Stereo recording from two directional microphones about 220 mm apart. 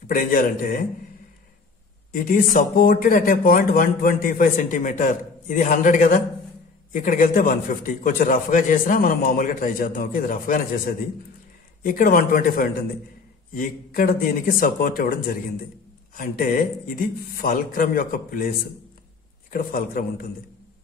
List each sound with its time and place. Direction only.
0.1 s speech: 40° left (ahead or behind)
2.1 s speech: 40° left (ahead or behind)
16.2 s speech: 40° left (ahead or behind)
19.5 s speech: 40° left (ahead or behind)